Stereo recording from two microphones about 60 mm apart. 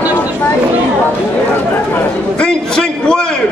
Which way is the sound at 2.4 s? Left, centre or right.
Centre.